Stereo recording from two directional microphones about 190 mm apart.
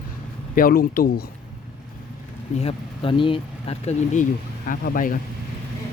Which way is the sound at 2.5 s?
35° left (ahead or behind).